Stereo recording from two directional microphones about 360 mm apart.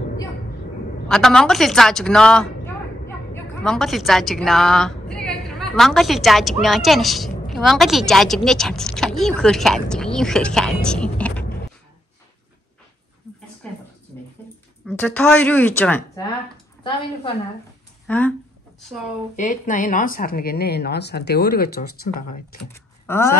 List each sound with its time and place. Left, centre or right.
1.0 s a woman's voice: centre
14.4 s a sound: centre
14.9 s a woman's voice: centre
18.0 s speech: centre
19.3 s speech: centre
22.6 s speech: centre